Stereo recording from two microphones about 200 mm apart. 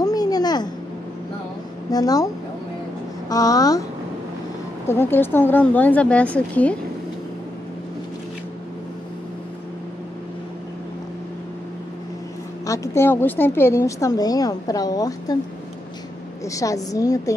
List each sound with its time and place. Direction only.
0.0 s a sound: 20° left (ahead or behind)
1.9 s a woman's voice: 20° left (ahead or behind)
3.3 s a woman's voice: 15° left (ahead or behind)
4.8 s a woman's voice: 10° left (ahead or behind)
12.6 s a woman's voice: 15° left (ahead or behind)
16.4 s a woman's voice: 15° left (ahead or behind)